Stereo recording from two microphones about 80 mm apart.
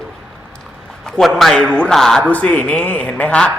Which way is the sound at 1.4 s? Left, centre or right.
Centre.